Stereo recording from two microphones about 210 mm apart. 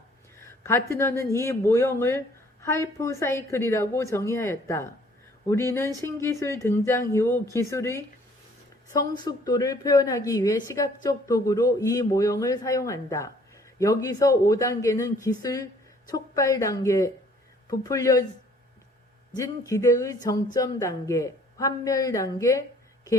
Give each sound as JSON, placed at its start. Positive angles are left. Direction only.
{"t": 0.4, "sound": "speech", "side_deg": 10}
{"t": 9.1, "sound": "speech", "side_deg": 20}
{"t": 19.4, "sound": "speech", "side_deg": 15}